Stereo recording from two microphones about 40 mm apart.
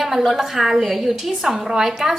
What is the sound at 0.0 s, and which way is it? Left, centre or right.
A woman's voice, centre.